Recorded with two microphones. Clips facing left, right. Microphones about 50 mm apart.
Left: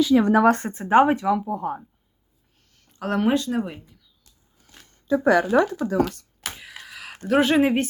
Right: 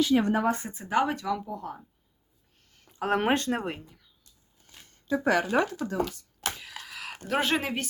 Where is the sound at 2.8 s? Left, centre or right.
Centre.